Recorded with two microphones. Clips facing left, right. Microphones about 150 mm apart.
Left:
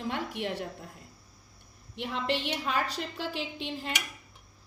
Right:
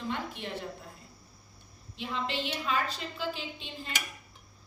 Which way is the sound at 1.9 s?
65° left (ahead or behind).